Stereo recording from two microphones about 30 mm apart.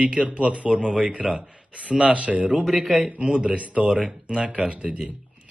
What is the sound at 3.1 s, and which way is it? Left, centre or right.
Speech, right.